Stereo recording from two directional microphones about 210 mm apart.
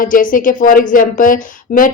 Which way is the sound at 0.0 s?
40° left (ahead or behind).